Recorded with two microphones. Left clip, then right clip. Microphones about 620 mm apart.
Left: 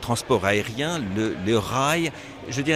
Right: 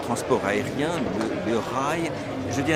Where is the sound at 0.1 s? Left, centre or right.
Left.